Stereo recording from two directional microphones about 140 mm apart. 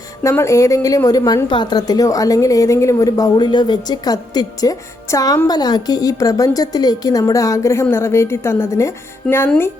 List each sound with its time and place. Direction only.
0.2 s a woman's voice: 20° left (ahead or behind)
9.2 s speech: 5° left (ahead or behind)